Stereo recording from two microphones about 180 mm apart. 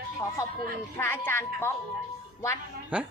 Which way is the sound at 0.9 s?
10° left (ahead or behind).